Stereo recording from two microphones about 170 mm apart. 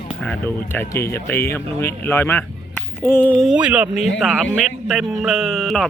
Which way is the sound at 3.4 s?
5° right (ahead or behind).